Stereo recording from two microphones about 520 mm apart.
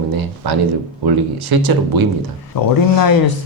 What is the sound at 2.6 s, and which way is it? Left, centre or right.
Speech, left.